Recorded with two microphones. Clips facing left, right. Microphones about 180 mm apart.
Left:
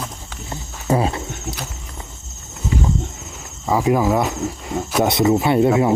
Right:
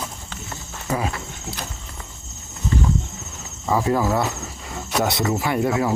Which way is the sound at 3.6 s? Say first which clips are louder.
Left 3 dB; 15° left (ahead or behind).